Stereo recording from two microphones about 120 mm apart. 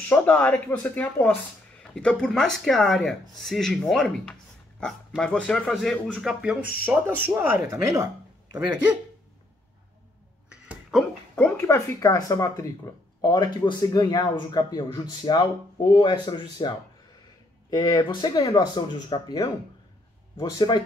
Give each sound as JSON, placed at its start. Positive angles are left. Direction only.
{"t": 0.1, "sound": "speech", "side_deg": 15}
{"t": 10.5, "sound": "a sound", "side_deg": -5}
{"t": 11.3, "sound": "speech", "side_deg": 20}
{"t": 20.3, "sound": "speech", "side_deg": 35}